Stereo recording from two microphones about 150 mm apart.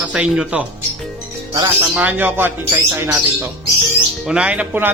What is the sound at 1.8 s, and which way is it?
A man's voice, 10° right (ahead or behind).